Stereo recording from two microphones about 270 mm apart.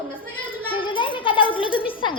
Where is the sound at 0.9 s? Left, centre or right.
Centre.